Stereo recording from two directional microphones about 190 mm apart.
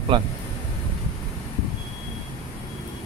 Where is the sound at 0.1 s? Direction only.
25° right (ahead or behind).